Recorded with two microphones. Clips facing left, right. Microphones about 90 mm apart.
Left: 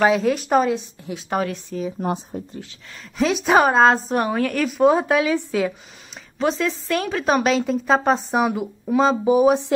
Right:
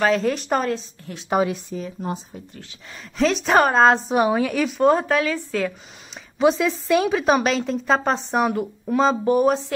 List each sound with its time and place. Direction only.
0.0 s a woman's voice: 5° left (ahead or behind)
1.3 s speech: 10° right (ahead or behind)
2.0 s speech: 50° left (ahead or behind)
3.2 s a woman's voice: 5° left (ahead or behind)
6.3 s a woman's voice: 5° right (ahead or behind)